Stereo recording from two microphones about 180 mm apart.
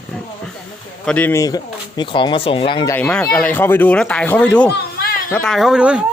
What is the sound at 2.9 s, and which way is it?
A man's voice, 5° left (ahead or behind).